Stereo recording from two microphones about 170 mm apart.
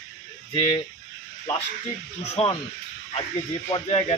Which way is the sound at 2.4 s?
40° left (ahead or behind).